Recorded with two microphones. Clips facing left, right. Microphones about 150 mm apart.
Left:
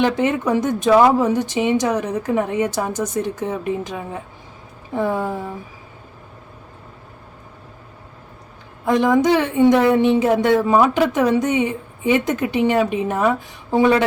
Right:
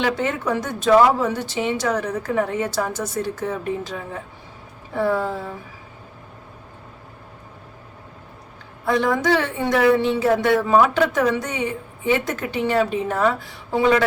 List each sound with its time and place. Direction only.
0.0 s a woman's voice: 20° left (ahead or behind)
8.8 s a woman's voice: 15° left (ahead or behind)